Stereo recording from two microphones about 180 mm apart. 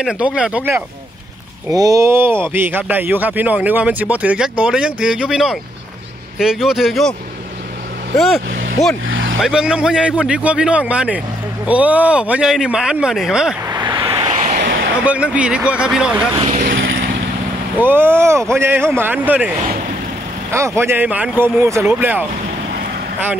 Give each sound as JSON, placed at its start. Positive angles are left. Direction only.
{"t": 0.0, "sound": "speech", "side_deg": -5}
{"t": 1.7, "sound": "speech", "side_deg": -20}
{"t": 9.0, "sound": "speech", "side_deg": -90}
{"t": 9.4, "sound": "speech", "side_deg": -5}
{"t": 13.7, "sound": "vehicle", "side_deg": -20}
{"t": 14.6, "sound": "a sound", "side_deg": -65}
{"t": 15.0, "sound": "speech", "side_deg": -5}
{"t": 16.3, "sound": "vehicle", "side_deg": -45}
{"t": 16.7, "sound": "vehicle", "side_deg": -90}
{"t": 17.7, "sound": "speech", "side_deg": -10}
{"t": 20.5, "sound": "speech", "side_deg": -15}